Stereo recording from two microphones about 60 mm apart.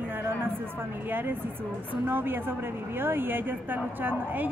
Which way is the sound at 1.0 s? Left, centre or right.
Right.